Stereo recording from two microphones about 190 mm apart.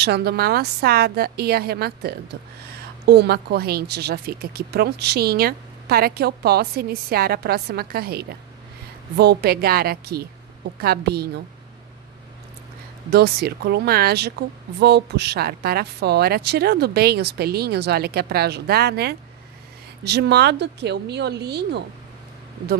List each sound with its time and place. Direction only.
0.0 s a woman's voice: 60° right (ahead or behind)
13.1 s a woman's voice: 55° right (ahead or behind)